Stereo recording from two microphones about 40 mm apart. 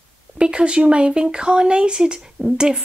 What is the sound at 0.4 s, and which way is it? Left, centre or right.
A woman's voice, right.